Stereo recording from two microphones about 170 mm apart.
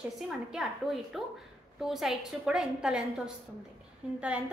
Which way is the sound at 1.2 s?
Centre (ahead or behind).